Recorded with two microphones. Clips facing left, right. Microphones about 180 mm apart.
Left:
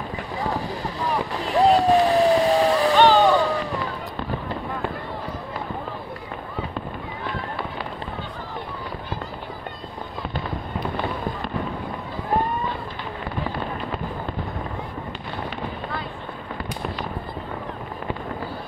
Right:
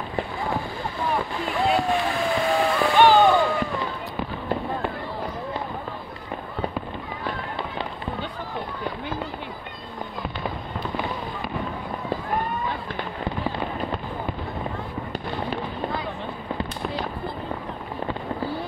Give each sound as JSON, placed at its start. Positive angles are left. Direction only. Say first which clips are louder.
{"t": 0.4, "sound": "clip-clop", "louder": "left 4 dB", "side_deg": 40}
{"t": 1.1, "sound": "boat", "louder": "left 6 dB", "side_deg": 40}
{"t": 3.2, "sound": "a sound", "louder": "even", "side_deg": 35}